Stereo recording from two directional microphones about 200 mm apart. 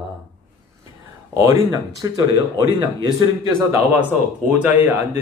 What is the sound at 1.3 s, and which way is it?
Speech, 15° right (ahead or behind).